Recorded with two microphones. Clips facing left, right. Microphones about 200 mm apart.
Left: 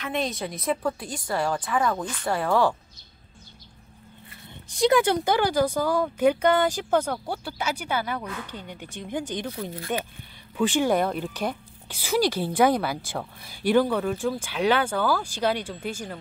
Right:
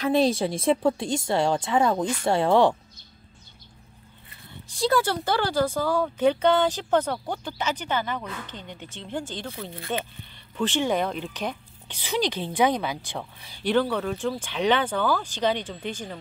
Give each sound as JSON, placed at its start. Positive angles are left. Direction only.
{"t": 0.0, "sound": "speech", "side_deg": -30}
{"t": 4.7, "sound": "speech", "side_deg": 20}